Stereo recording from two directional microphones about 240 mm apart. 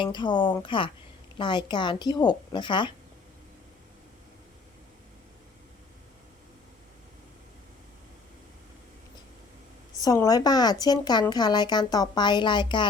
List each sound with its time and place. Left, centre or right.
0.0 s a woman's voice: centre
10.0 s speech: centre